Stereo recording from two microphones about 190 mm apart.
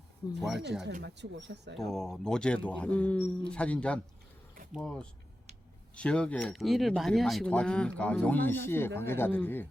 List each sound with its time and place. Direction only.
0.3 s speech: centre (ahead or behind)
0.9 s speech: 65° right (ahead or behind)
1.7 s speech: centre (ahead or behind)